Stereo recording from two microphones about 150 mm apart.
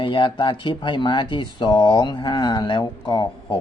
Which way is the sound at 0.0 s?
35° left (ahead or behind).